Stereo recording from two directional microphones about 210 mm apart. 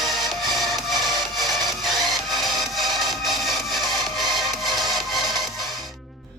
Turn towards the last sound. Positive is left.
turn(degrees=0)  # may be behind; listen again after turning